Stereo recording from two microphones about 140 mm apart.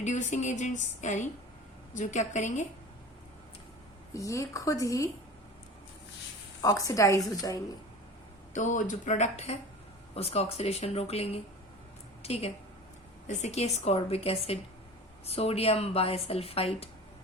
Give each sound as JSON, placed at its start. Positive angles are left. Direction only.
{"t": 0.0, "sound": "speech", "side_deg": 60}
{"t": 4.1, "sound": "a woman's voice", "side_deg": 25}
{"t": 6.6, "sound": "a woman's voice", "side_deg": 25}
{"t": 8.5, "sound": "a woman's voice", "side_deg": 65}